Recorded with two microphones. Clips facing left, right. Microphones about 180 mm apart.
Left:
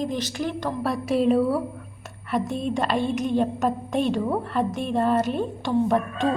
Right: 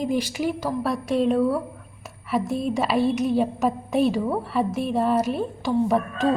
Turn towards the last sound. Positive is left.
turn(degrees=0)  # may be behind; listen again after turning